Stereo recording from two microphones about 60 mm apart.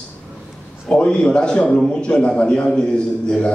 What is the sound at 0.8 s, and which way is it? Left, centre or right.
A man's voice, centre.